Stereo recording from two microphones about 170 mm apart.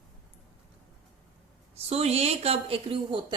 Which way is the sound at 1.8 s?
40° right (ahead or behind).